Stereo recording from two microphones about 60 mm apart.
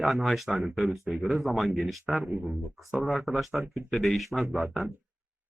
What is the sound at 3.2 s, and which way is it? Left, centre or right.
Speech, centre.